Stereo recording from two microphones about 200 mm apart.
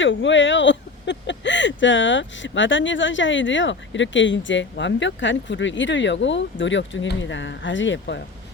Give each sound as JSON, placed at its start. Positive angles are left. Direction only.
{"t": 0.0, "sound": "speech", "side_deg": 65}